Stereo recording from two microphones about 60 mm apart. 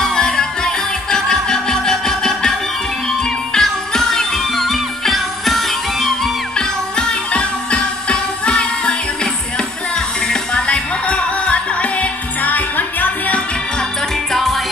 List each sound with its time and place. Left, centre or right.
0.0 s music: centre
6.5 s music: centre
14.3 s music: centre